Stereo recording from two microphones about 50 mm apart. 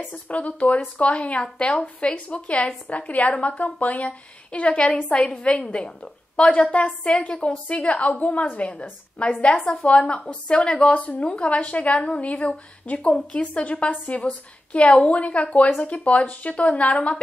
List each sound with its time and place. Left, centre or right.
0.1 s a woman's voice: left